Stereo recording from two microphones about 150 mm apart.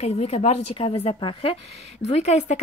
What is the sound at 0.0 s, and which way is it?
A woman's voice, 45° left (ahead or behind).